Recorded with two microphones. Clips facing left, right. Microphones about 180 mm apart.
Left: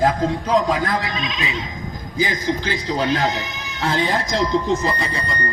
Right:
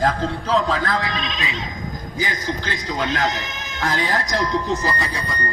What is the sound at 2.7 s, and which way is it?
A man's voice, 30° left (ahead or behind).